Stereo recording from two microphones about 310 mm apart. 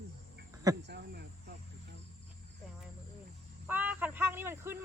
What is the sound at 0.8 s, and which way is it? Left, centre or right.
Cricket, right.